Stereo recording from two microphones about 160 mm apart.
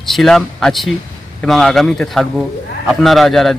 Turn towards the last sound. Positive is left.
turn(degrees=0)  # may be behind; listen again after turning